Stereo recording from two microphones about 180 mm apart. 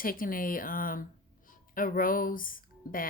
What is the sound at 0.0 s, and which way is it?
Speech, 50° left (ahead or behind).